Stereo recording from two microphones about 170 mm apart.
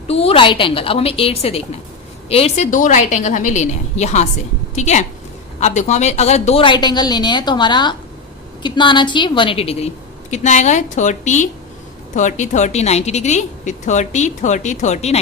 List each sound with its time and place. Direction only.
0.1 s a woman's voice: 35° left (ahead or behind)